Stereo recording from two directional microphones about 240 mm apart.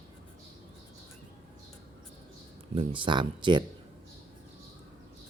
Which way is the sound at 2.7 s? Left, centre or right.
Right.